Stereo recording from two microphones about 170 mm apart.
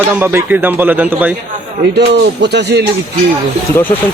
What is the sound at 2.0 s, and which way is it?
Speech, 80° right.